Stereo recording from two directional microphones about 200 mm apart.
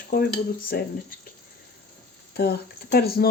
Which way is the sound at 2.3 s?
55° left (ahead or behind).